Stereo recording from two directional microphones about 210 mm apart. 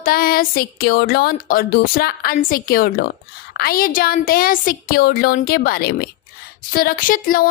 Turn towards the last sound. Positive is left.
turn(degrees=40)  # may be behind; listen again after turning